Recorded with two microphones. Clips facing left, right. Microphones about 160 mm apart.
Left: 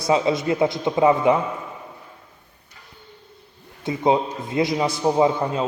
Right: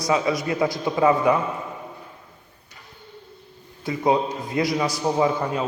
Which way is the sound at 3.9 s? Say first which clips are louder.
Left 1 dB; 25° left (ahead or behind).